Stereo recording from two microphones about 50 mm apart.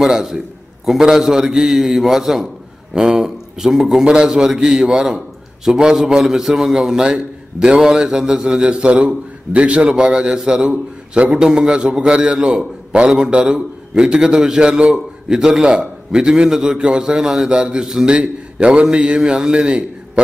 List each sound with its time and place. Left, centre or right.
0.0 s a man's voice: centre
4.0 s a man's voice: centre